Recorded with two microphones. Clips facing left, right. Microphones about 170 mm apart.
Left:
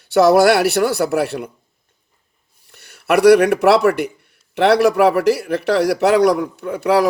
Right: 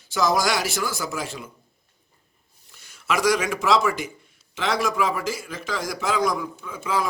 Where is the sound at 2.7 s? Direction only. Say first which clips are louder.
Left 9 dB; 65° left (ahead or behind).